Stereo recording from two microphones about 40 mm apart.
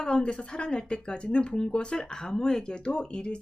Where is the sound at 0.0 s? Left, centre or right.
Left.